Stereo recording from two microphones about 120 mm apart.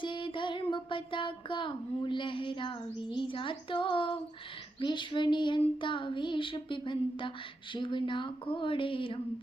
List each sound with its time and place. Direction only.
0.0 s child singing: 45° left (ahead or behind)